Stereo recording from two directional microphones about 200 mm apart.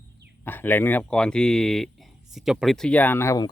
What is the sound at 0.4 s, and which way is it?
Speech, 10° left (ahead or behind).